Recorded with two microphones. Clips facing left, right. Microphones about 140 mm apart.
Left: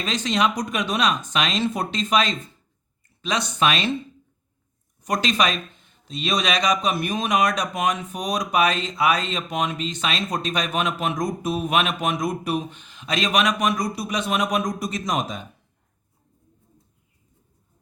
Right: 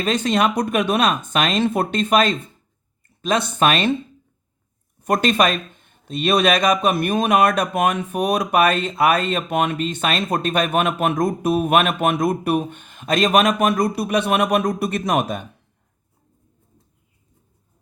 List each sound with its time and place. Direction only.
0.0 s speech: 55° right (ahead or behind)
5.0 s speech: 55° right (ahead or behind)